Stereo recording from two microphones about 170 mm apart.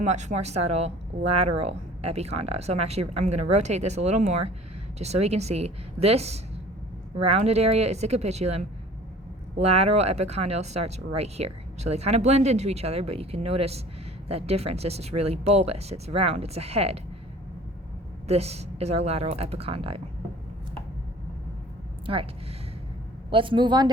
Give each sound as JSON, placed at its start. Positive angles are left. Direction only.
{"t": 0.0, "sound": "speech", "side_deg": -45}
{"t": 9.6, "sound": "speech", "side_deg": -35}
{"t": 18.3, "sound": "speech", "side_deg": -40}
{"t": 22.0, "sound": "speech", "side_deg": -30}
{"t": 23.3, "sound": "speech", "side_deg": -30}